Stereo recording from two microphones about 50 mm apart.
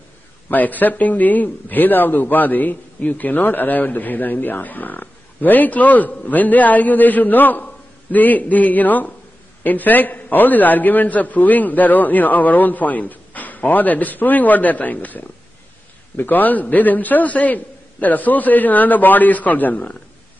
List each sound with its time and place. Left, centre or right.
0.5 s a man's voice: left